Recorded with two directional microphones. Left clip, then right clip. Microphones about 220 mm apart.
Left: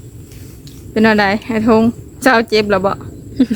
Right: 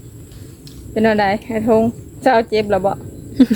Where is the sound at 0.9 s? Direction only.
50° left (ahead or behind).